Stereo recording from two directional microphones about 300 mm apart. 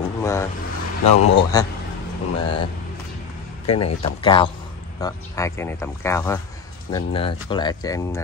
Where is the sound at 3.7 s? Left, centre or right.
Centre.